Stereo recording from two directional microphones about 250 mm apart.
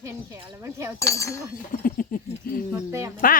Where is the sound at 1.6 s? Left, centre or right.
Left.